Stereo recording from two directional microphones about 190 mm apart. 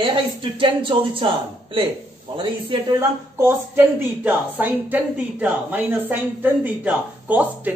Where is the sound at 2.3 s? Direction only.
25° right (ahead or behind).